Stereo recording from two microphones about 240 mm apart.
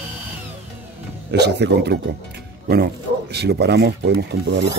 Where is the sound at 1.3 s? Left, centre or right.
Right.